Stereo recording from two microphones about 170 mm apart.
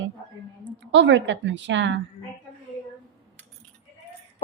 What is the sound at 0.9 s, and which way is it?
A woman's voice, 90° right.